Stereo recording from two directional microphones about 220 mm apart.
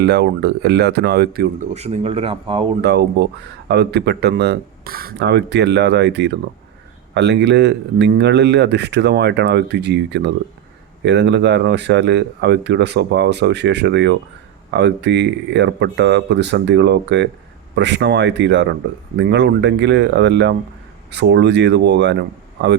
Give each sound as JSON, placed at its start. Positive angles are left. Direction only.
{"t": 0.0, "sound": "speech", "side_deg": -50}
{"t": 1.7, "sound": "speech", "side_deg": -30}
{"t": 2.8, "sound": "speech", "side_deg": -50}